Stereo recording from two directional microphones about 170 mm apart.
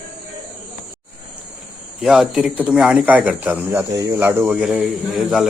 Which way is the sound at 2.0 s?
5° right (ahead or behind).